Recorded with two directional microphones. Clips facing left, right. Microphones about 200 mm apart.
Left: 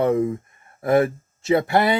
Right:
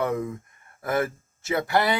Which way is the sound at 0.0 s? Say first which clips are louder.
Left 7 dB; 25° left (ahead or behind).